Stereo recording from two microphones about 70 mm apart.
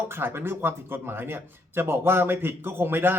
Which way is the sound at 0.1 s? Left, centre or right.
Right.